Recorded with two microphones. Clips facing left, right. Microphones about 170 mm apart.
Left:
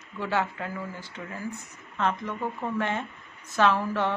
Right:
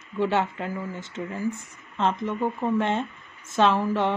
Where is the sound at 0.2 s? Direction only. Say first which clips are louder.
Right 4 dB; 20° right (ahead or behind).